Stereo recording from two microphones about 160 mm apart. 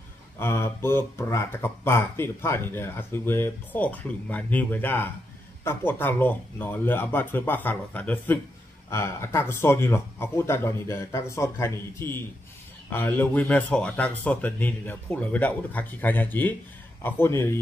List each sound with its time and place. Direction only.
0.4 s speech: 15° left (ahead or behind)